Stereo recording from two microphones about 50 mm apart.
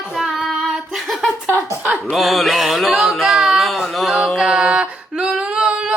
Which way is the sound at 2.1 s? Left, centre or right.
Centre.